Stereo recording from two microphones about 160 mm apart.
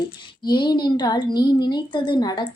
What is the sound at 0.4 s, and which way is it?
Speech, 30° left (ahead or behind).